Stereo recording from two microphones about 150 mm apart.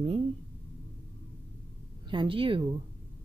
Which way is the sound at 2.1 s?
35° right (ahead or behind).